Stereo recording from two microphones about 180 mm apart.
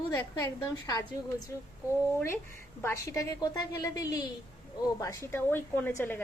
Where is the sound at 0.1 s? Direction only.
15° left (ahead or behind).